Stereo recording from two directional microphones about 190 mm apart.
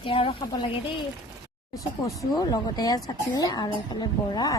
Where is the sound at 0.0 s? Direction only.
30° left (ahead or behind).